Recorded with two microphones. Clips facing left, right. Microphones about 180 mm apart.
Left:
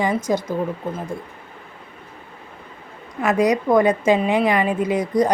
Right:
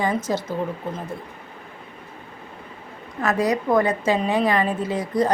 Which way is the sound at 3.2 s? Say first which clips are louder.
Left 3 dB; 15° left (ahead or behind).